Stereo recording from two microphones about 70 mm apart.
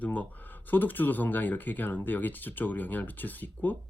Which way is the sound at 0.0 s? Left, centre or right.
Left.